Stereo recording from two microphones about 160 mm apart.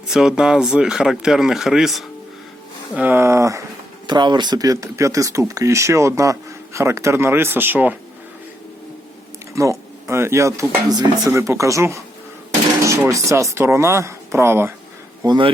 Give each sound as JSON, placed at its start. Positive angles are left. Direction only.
{"t": 0.1, "sound": "speech", "side_deg": -5}
{"t": 9.6, "sound": "speech", "side_deg": -20}
{"t": 15.2, "sound": "speech", "side_deg": -30}